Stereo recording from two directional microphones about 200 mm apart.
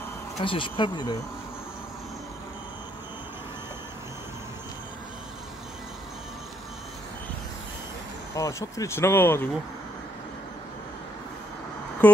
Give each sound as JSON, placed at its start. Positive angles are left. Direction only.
{"t": 0.4, "sound": "speech", "side_deg": 25}
{"t": 8.4, "sound": "speech", "side_deg": 15}
{"t": 12.0, "sound": "a sound", "side_deg": 5}